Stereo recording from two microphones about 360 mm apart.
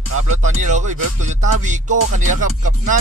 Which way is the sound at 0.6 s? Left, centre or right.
Centre.